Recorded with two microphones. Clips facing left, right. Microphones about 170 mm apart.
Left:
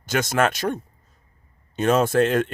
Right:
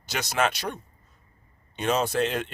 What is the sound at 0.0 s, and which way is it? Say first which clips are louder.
Speech: left 5 dB; 50° left (ahead or behind).